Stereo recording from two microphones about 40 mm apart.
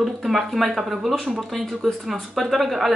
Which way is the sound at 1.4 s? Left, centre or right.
Centre.